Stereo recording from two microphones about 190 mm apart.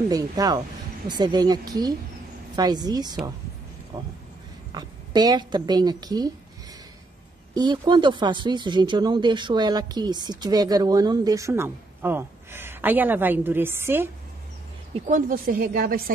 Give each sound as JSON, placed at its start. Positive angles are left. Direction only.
{"t": 0.1, "sound": "speech", "side_deg": -20}
{"t": 7.5, "sound": "speech", "side_deg": -20}
{"t": 15.0, "sound": "speech", "side_deg": -45}